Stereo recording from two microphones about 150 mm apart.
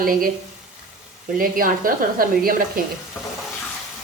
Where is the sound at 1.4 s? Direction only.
70° right (ahead or behind).